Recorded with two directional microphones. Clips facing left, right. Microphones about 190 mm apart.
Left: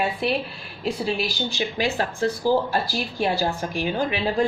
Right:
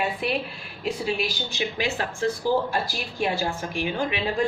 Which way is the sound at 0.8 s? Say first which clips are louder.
Left 2 dB; 35° left (ahead or behind).